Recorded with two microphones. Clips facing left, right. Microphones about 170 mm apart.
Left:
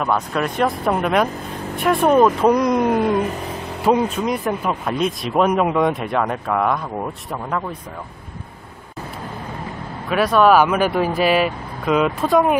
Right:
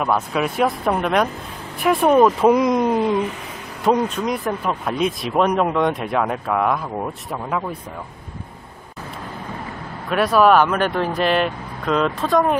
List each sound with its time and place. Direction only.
0.0 s speech: 5° right (ahead or behind)
3.0 s a sound: 55° left (ahead or behind)
3.8 s speech: 5° left (ahead or behind)
10.0 s speech: centre (ahead or behind)